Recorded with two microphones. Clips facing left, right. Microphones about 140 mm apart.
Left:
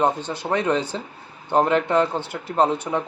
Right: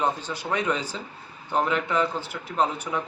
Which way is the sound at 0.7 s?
60° left (ahead or behind).